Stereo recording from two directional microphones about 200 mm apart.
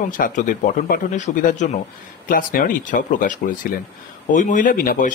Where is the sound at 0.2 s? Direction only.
45° left (ahead or behind).